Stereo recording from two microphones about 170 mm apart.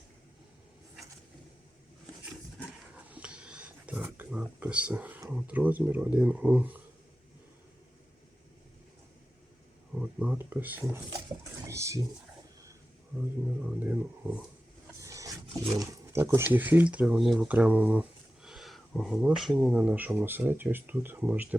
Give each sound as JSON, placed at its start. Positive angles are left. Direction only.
{"t": 3.1, "sound": "a sound", "side_deg": -5}
{"t": 5.3, "sound": "speech", "side_deg": -10}
{"t": 9.9, "sound": "speech", "side_deg": -5}
{"t": 11.7, "sound": "a sound", "side_deg": -15}
{"t": 13.7, "sound": "speech", "side_deg": -10}
{"t": 15.0, "sound": "roaring cats", "side_deg": -20}
{"t": 15.7, "sound": "speech", "side_deg": -20}